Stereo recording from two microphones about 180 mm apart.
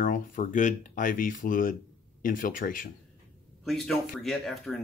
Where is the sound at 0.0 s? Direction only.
50° left (ahead or behind).